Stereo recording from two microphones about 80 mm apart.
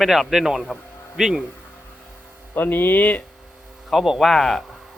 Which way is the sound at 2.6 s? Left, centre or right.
Left.